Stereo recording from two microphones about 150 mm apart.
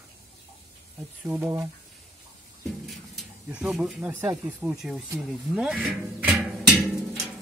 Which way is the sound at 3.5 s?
5° right (ahead or behind).